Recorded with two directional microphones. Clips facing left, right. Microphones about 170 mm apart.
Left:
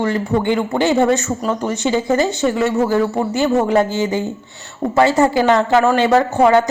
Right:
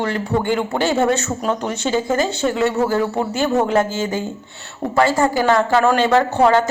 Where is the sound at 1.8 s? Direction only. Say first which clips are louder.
Left 2 dB; 15° left (ahead or behind).